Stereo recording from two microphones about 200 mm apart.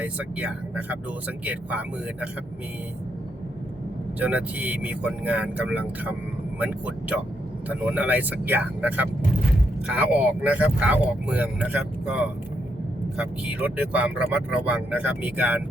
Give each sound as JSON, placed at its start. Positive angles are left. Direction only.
{"t": 0.0, "sound": "speech", "side_deg": -5}
{"t": 4.2, "sound": "speech", "side_deg": -5}